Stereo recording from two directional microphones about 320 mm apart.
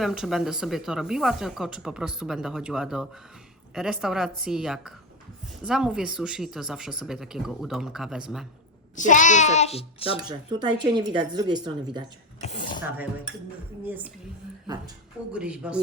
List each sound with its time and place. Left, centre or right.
0.0 s speech: centre
9.0 s a child's voice: left
10.2 s speech: centre
12.4 s a woman's voice: left
15.3 s speech: centre